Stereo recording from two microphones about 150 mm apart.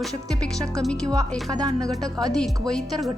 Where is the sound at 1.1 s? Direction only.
25° right (ahead or behind).